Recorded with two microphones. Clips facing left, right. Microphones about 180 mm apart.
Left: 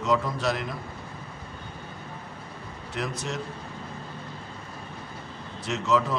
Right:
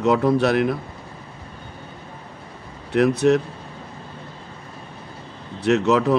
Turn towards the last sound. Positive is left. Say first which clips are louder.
# right 8 dB
turn(degrees=-65)  # may be behind; listen again after turning